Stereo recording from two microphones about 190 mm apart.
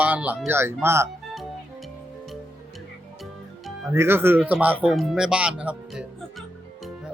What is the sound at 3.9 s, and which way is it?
Speech, 10° right (ahead or behind).